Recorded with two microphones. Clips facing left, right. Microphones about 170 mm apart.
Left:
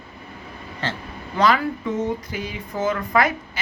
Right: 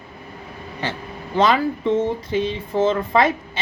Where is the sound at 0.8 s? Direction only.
15° right (ahead or behind).